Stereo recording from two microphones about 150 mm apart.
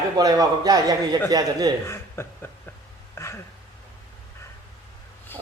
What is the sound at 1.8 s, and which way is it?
Speech, 15° left (ahead or behind).